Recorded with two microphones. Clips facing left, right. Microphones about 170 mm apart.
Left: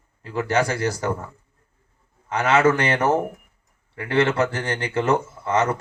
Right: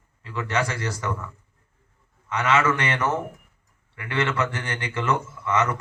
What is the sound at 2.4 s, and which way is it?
Speech, 35° left (ahead or behind).